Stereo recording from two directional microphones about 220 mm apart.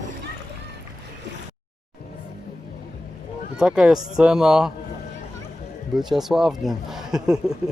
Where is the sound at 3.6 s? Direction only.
5° right (ahead or behind).